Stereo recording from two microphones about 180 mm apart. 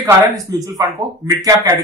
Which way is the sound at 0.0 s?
20° right (ahead or behind).